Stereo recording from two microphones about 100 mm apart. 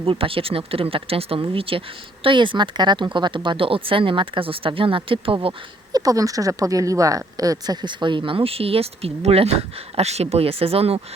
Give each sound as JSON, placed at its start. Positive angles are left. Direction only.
{"t": 0.0, "sound": "a woman's voice", "side_deg": -65}
{"t": 2.2, "sound": "a woman's voice", "side_deg": -55}
{"t": 5.9, "sound": "a woman's voice", "side_deg": -35}